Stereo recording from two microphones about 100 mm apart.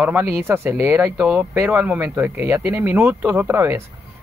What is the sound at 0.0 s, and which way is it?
Speech, 15° right (ahead or behind).